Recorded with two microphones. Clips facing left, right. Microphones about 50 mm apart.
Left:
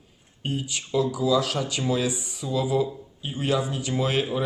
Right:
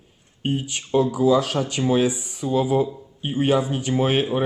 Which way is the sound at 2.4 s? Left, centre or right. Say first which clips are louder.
Right 6 dB; right.